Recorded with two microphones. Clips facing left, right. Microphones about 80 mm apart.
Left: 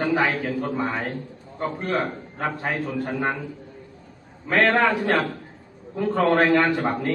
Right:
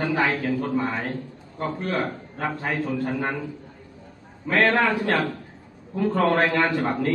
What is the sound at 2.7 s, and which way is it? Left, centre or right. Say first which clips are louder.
Speech: right 1 dB; centre.